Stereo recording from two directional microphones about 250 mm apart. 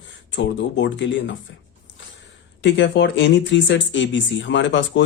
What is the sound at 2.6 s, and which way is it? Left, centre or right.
Speech, left.